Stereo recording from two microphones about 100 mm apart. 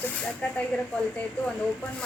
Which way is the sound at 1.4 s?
15° left (ahead or behind).